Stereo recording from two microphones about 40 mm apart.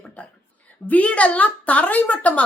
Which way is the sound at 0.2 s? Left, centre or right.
Left.